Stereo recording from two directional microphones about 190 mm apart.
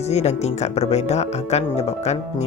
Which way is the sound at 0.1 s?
35° left (ahead or behind).